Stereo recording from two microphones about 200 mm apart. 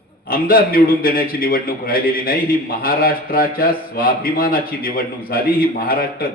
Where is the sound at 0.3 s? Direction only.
45° left (ahead or behind).